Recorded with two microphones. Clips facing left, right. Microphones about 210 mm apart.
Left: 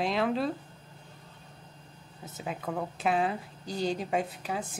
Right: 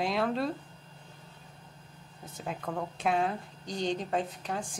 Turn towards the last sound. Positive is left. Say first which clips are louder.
# left 1 dB
turn(degrees=5)  # may be behind; listen again after turning